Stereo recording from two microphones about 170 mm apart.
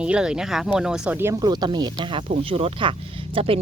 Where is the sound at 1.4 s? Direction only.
25° right (ahead or behind).